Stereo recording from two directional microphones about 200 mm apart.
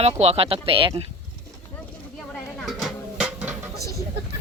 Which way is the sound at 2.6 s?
Centre (ahead or behind).